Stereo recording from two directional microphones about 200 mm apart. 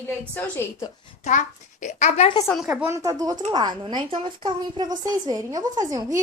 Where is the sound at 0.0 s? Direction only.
10° left (ahead or behind).